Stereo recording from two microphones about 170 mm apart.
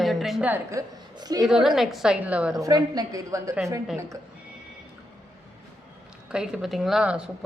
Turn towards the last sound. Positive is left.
turn(degrees=-5)  # may be behind; listen again after turning